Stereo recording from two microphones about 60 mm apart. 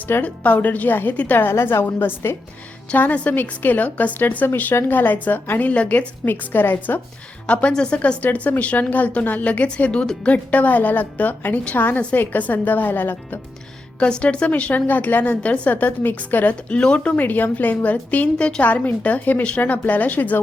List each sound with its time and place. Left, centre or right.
0.0 s a woman's voice: left
2.9 s a woman's voice: left
6.2 s a woman's voice: left
7.4 s a woman's voice: left
14.0 s a woman's voice: centre